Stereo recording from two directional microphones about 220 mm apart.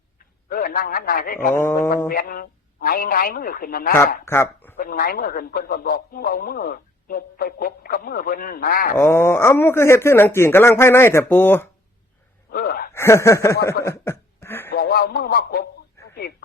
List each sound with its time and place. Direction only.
0.4 s a man's voice: 40° left (ahead or behind)
4.3 s a sound: 10° left (ahead or behind)
4.8 s a man's voice: 40° left (ahead or behind)
9.0 s a man's voice: 10° left (ahead or behind)
12.5 s speech: 45° left (ahead or behind)
12.9 s speech: 10° left (ahead or behind)
13.8 s a sound: 10° left (ahead or behind)
14.7 s music: 45° left (ahead or behind)
16.0 s radio: 10° left (ahead or behind)